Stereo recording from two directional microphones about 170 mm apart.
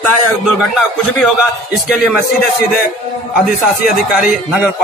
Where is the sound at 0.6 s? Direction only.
Centre (ahead or behind).